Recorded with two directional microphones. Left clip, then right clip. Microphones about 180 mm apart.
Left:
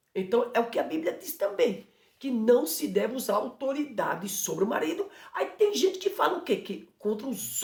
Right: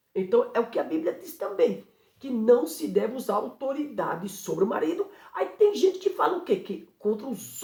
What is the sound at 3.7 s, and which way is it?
Speech, 10° left (ahead or behind).